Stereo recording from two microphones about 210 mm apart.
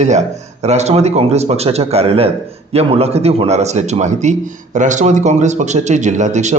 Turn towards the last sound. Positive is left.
turn(degrees=-35)  # may be behind; listen again after turning